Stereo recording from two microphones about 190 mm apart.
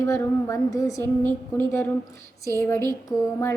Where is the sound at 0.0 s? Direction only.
15° left (ahead or behind).